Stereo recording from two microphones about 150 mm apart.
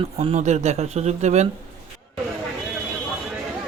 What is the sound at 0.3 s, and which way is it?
Speech, 50° right (ahead or behind).